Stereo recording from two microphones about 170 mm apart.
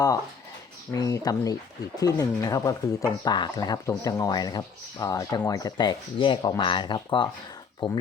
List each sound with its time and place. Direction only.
0.9 s speech: 20° left (ahead or behind)